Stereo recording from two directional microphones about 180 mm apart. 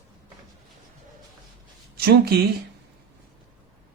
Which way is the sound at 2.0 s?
60° right (ahead or behind).